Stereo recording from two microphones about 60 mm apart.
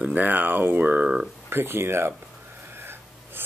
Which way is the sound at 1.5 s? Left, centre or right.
Right.